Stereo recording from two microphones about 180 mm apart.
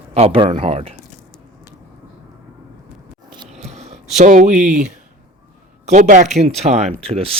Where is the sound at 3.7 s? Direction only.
40° right (ahead or behind).